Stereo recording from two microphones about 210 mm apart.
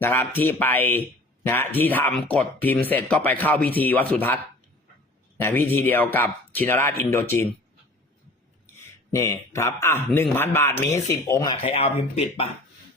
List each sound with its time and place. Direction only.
0.0 s speech: 10° left (ahead or behind)
5.4 s speech: 10° left (ahead or behind)
9.1 s speech: 15° left (ahead or behind)